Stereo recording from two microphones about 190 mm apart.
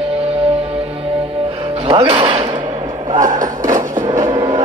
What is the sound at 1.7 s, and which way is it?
Music, 30° right (ahead or behind).